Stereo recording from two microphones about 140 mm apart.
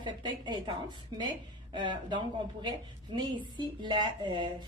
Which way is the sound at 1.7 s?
35° right (ahead or behind).